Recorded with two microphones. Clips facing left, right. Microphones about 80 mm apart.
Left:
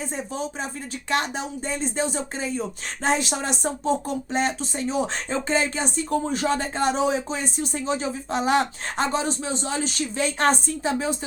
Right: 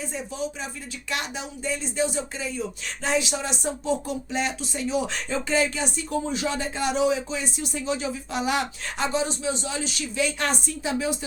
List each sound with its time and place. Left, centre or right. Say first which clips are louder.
0.0 s speech: left 1 dB; left